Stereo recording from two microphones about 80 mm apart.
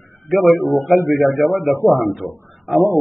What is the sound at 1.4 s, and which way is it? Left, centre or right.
Speech, left.